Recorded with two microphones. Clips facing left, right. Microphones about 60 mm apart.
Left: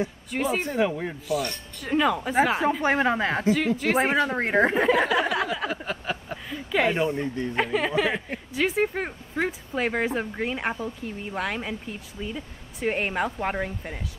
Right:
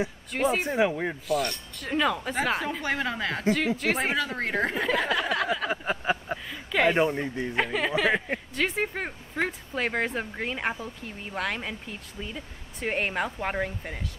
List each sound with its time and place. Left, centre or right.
0.3 s speech: centre
0.7 s speech: centre
1.2 s speech: centre
2.8 s a woman's voice: left
3.4 s speech: centre
4.1 s a woman's voice: left
5.3 s a sound: centre
5.7 s a sound: centre
6.5 s a sound: centre
7.0 s speech: right
7.5 s speech: centre